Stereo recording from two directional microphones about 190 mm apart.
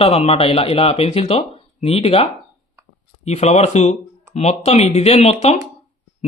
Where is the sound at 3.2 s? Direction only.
35° left (ahead or behind).